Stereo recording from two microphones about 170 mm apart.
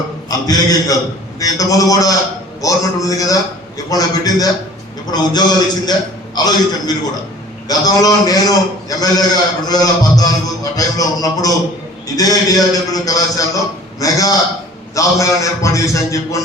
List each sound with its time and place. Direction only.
0.3 s a man's voice: 20° left (ahead or behind)